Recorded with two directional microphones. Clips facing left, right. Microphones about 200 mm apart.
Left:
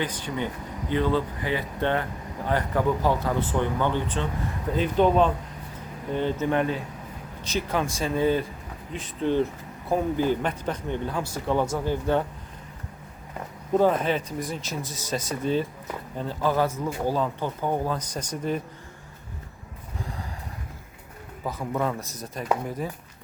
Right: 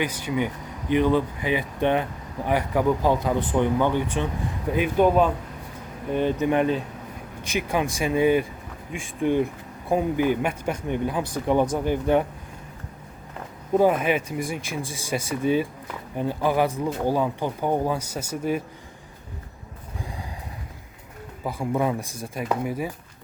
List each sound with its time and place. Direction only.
0.0 s speech: 10° right (ahead or behind)
13.7 s speech: 10° right (ahead or behind)
21.4 s speech: 10° right (ahead or behind)